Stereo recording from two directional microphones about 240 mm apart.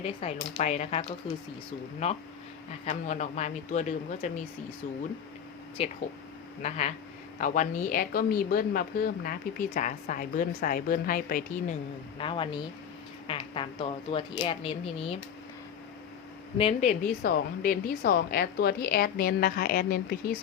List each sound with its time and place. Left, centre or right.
0.0 s speech: left
5.8 s speech: left
12.1 s speech: left
16.6 s speech: left
17.2 s speech: left